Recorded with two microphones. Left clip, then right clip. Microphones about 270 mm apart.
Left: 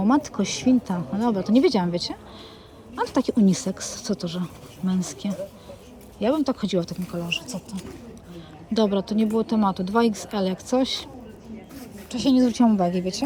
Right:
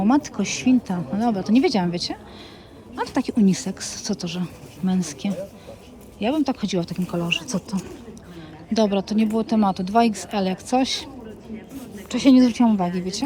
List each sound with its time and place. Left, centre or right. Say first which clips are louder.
0.0 s speech: right 1 dB; centre
7.3 s speech: right 4 dB; right
8.7 s speech: right 2 dB; centre
12.3 s speech: right 3 dB; centre